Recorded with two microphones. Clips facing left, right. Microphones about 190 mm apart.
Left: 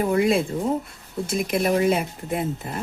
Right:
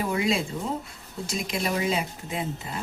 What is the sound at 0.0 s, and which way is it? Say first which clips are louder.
Speech: left 6 dB; 50° left (ahead or behind).